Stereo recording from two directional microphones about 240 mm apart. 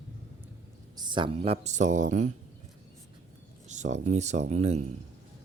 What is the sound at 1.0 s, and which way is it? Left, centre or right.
Speech, centre.